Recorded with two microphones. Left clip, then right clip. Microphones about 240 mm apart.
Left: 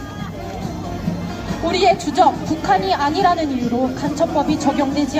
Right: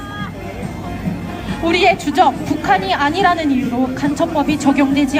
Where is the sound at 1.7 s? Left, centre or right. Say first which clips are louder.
Right 2 dB; right.